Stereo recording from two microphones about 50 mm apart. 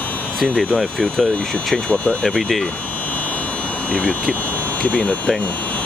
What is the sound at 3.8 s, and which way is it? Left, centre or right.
Speech, left.